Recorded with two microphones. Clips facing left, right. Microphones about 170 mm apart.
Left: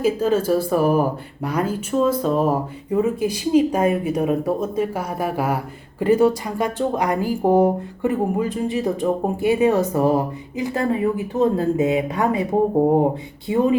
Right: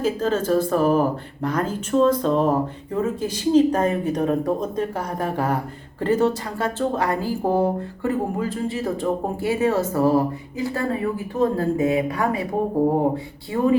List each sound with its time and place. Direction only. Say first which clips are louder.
0.0 s speech: left 3 dB; 10° left (ahead or behind)